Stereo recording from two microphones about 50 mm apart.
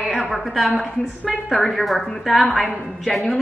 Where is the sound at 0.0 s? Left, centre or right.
Centre.